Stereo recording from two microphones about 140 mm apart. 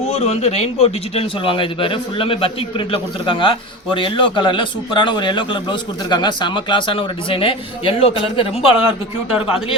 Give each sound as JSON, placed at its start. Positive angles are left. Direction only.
{"t": 0.1, "sound": "speech", "side_deg": 50}